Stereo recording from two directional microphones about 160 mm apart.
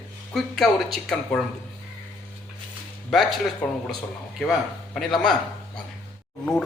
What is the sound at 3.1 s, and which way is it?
Speech, centre (ahead or behind).